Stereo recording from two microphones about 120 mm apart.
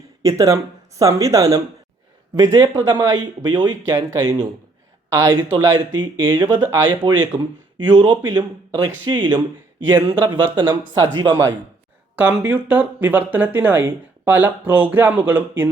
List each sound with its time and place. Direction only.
0.2 s speech: 25° right (ahead or behind)
6.6 s speech: 25° right (ahead or behind)
6.8 s speech: 40° right (ahead or behind)
12.1 s speech: 10° right (ahead or behind)